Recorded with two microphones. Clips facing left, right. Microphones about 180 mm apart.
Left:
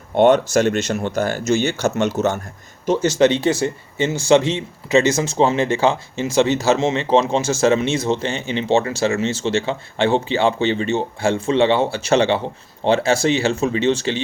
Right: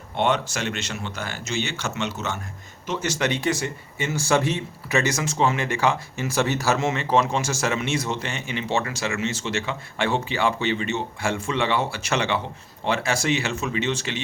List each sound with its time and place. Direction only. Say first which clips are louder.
0.2 s speech: left 10 dB; 45° left (ahead or behind)
2.8 s speech: left 10 dB; 30° left (ahead or behind)